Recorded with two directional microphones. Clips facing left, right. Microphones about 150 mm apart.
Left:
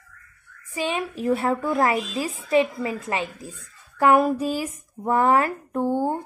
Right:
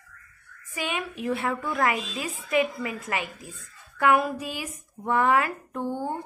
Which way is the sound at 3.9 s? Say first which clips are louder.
Left 4 dB; 40° left (ahead or behind).